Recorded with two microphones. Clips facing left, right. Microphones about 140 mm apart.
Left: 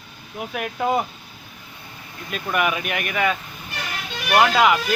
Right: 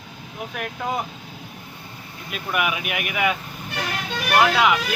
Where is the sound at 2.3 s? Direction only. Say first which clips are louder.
Left 2 dB; 5° right (ahead or behind).